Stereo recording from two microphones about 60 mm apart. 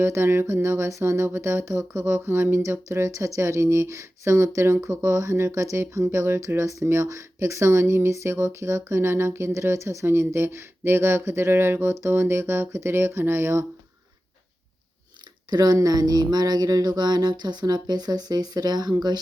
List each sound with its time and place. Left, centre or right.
0.0 s speech: right
15.5 s speech: right